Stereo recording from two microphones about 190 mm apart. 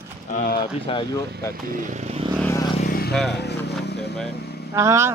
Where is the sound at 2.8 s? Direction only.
55° left (ahead or behind).